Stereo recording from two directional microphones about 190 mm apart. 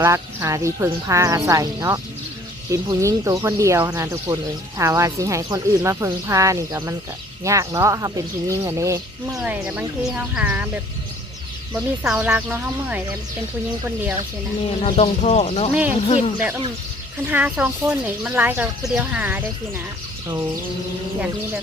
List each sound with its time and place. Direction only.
0.0 s speech: 15° right (ahead or behind)
11.7 s speech: 5° right (ahead or behind)
14.8 s speech: 35° left (ahead or behind)
15.7 s speech: 10° right (ahead or behind)
16.0 s speech: 35° left (ahead or behind)
17.3 s speech: 5° right (ahead or behind)